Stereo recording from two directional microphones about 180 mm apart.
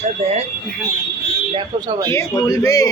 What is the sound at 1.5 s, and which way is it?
Speech, 25° right (ahead or behind).